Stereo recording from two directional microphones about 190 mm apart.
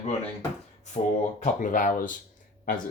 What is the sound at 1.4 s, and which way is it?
Speech, 45° left (ahead or behind).